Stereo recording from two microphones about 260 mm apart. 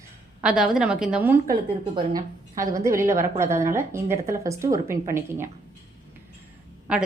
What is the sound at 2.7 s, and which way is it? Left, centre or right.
A woman's voice, centre.